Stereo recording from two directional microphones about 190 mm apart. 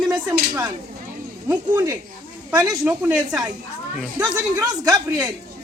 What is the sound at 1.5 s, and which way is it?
A woman's voice, 10° right (ahead or behind).